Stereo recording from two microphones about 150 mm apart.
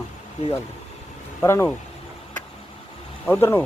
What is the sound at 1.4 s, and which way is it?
Speech, 15° left (ahead or behind).